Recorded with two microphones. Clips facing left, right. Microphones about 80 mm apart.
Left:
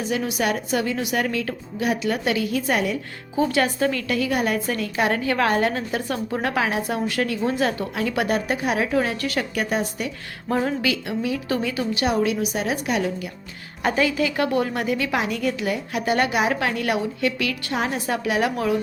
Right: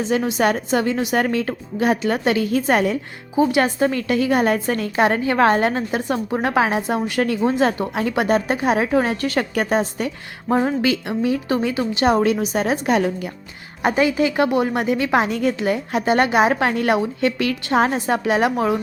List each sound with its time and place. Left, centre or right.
0.0 s a woman's voice: right
3.3 s a woman's voice: right
10.5 s a woman's voice: right
13.8 s a woman's voice: right